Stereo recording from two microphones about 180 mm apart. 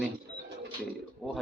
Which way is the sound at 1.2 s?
10° left (ahead or behind).